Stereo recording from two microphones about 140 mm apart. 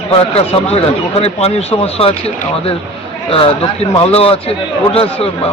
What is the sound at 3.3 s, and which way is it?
Speech, 45° left (ahead or behind).